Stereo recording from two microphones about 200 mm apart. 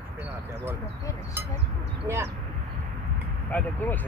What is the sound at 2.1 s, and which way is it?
Speech, 15° right (ahead or behind).